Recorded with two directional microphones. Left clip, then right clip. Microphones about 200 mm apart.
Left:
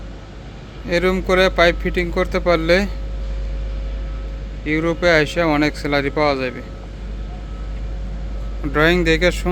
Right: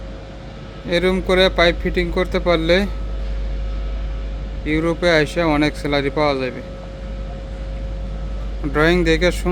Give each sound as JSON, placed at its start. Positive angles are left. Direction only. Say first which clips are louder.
{"t": 0.9, "sound": "a man's voice", "louder": "even", "side_deg": -5}
{"t": 4.6, "sound": "a man's voice", "louder": "left 1 dB", "side_deg": -10}
{"t": 8.6, "sound": "a man's voice", "louder": "even", "side_deg": -5}